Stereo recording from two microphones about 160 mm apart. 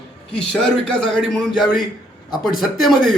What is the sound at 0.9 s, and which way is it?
A man's voice, 5° left (ahead or behind).